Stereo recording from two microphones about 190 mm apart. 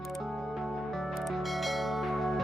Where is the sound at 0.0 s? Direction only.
Centre (ahead or behind).